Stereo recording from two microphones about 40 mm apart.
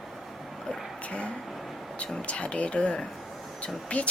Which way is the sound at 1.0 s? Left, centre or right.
Left.